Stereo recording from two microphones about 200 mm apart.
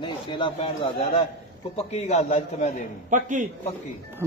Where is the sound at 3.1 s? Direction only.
40° right (ahead or behind).